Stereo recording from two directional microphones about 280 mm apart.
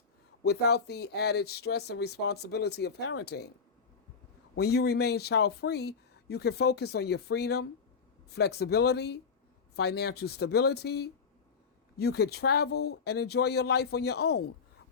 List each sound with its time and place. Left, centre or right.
0.4 s speech: left
4.5 s speech: left